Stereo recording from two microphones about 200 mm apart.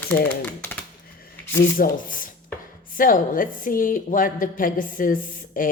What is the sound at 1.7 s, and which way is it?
A woman's voice, 45° left (ahead or behind).